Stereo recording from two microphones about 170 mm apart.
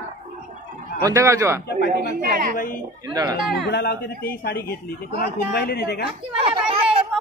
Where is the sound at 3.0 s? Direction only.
25° right (ahead or behind).